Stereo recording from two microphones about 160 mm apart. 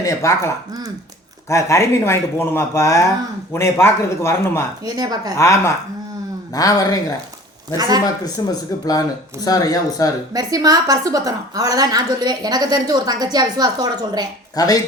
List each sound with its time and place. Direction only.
0.0 s speech: 20° left (ahead or behind)
4.9 s a woman's voice: 25° right (ahead or behind)
5.4 s speech: 15° left (ahead or behind)
7.8 s a woman's voice: 25° right (ahead or behind)
8.4 s speech: 25° left (ahead or behind)
10.3 s a woman's voice: 25° right (ahead or behind)
14.5 s speech: 20° left (ahead or behind)